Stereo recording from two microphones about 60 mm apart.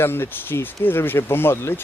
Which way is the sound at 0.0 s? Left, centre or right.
Left.